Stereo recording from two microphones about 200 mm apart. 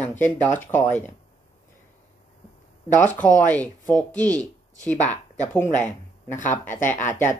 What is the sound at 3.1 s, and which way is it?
Speech, 40° left (ahead or behind).